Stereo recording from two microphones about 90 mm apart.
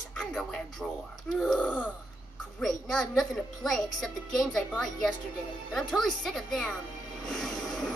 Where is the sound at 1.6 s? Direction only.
15° left (ahead or behind).